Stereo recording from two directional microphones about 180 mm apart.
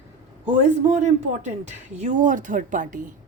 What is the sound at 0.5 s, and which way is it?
A woman's voice, 40° right (ahead or behind).